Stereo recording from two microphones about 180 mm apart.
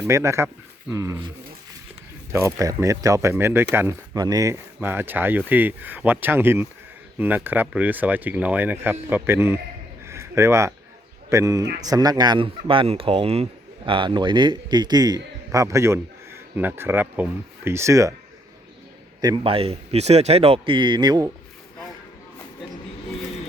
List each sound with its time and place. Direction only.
0.0 s speech: 15° right (ahead or behind)
2.3 s speech: 15° right (ahead or behind)
10.1 s a sound: 15° right (ahead or behind)
11.3 s speech: 15° right (ahead or behind)
19.2 s speech: 25° right (ahead or behind)